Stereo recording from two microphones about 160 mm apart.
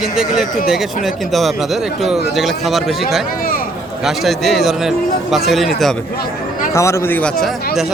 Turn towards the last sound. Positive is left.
turn(degrees=5)  # may be behind; listen again after turning